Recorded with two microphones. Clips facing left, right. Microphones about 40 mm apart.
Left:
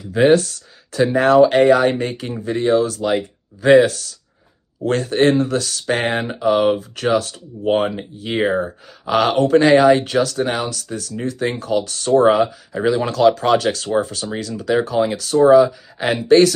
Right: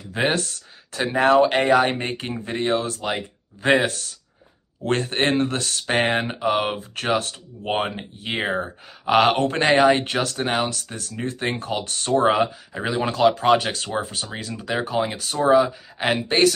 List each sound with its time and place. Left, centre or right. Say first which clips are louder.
0.1 s speech: left 9 dB; right
3.1 s speech: left 7 dB; right
12.7 s speech: left 6 dB; centre
13.9 s speech: left 7 dB; centre